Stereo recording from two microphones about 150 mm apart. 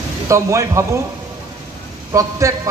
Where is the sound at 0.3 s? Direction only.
20° right (ahead or behind).